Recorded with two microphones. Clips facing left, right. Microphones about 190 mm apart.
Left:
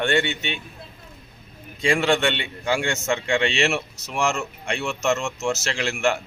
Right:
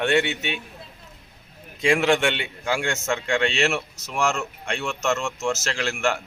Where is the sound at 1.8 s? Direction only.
5° right (ahead or behind).